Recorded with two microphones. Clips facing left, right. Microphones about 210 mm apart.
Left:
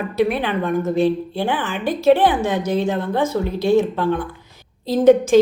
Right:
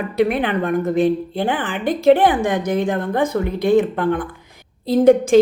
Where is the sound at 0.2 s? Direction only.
55° right (ahead or behind).